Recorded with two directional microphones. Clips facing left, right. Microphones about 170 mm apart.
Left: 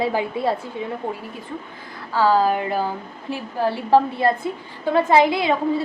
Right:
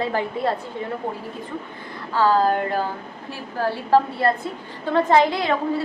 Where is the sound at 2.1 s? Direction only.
10° left (ahead or behind).